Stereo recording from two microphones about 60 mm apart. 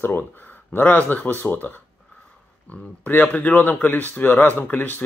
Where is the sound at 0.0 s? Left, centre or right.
Left.